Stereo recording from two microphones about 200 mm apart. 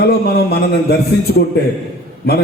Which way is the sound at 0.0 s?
55° left (ahead or behind).